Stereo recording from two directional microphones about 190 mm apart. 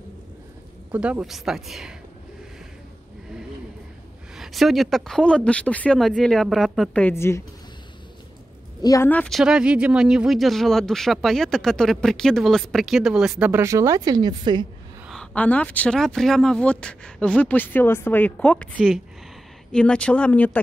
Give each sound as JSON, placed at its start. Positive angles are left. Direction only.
{"t": 0.9, "sound": "speech", "side_deg": -5}
{"t": 4.4, "sound": "speech", "side_deg": 0}
{"t": 8.8, "sound": "speech", "side_deg": 15}
{"t": 15.0, "sound": "speech", "side_deg": 5}